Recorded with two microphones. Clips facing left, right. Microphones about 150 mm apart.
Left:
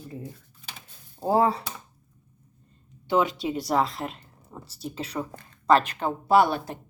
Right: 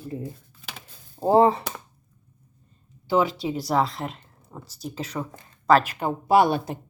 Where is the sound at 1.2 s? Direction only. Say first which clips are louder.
Right 5 dB; 20° right (ahead or behind).